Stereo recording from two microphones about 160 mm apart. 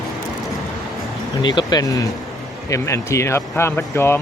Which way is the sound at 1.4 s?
30° left (ahead or behind).